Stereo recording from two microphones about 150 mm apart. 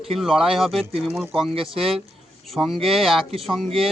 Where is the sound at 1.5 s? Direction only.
40° right (ahead or behind).